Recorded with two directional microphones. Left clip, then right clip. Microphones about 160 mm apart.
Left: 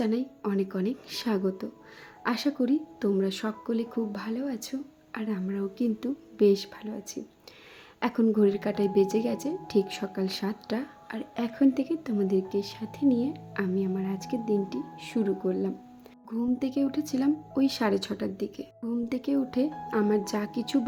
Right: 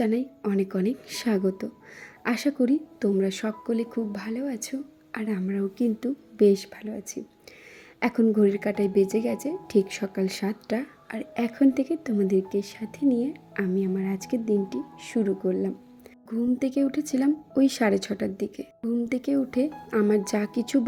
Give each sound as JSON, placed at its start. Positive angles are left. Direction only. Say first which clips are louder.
{"t": 0.0, "sound": "a woman's voice", "louder": "right 3 dB", "side_deg": -10}